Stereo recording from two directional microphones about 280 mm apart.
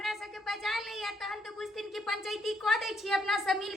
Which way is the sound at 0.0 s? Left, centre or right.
Centre.